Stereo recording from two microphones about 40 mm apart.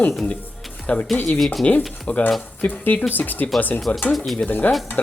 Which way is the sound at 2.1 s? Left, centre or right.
Left.